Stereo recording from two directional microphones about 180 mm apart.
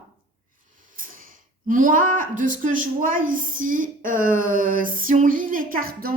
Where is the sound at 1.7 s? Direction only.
50° right (ahead or behind).